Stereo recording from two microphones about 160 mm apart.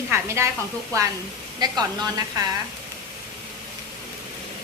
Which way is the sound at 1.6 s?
25° right (ahead or behind).